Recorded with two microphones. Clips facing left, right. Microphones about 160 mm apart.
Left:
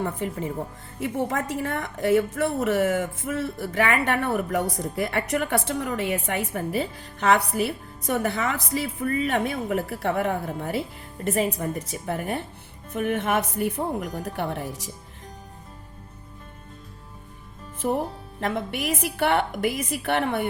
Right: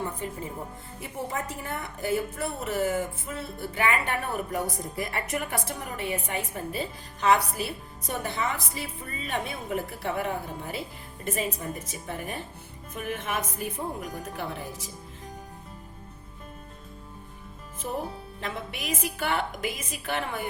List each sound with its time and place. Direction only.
0.9 s a woman's voice: 85° left
17.8 s a woman's voice: 70° left (ahead or behind)